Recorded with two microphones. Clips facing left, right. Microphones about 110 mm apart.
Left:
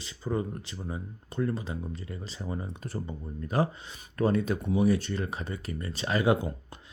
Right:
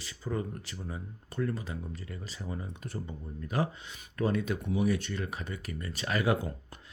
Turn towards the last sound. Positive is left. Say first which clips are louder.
# left 4 dB
turn(degrees=25)  # may be behind; listen again after turning